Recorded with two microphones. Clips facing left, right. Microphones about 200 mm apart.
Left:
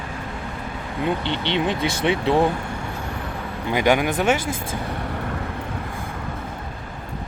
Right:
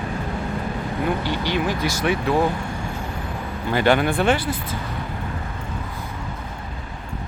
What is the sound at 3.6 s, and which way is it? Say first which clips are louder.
Speech: right 1 dB; 15° left (ahead or behind).